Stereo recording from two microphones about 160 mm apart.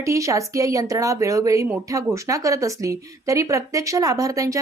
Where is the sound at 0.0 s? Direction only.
20° right (ahead or behind).